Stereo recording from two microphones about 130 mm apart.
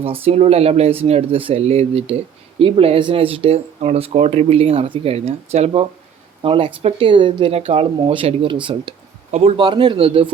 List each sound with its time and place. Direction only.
0.0 s speech: 50° right (ahead or behind)
6.4 s speech: 40° right (ahead or behind)
9.6 s speech: 35° right (ahead or behind)